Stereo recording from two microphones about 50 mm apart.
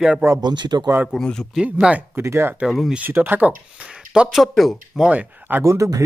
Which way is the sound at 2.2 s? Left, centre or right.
Right.